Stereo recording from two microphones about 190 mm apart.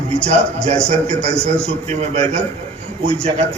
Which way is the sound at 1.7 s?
35° right (ahead or behind).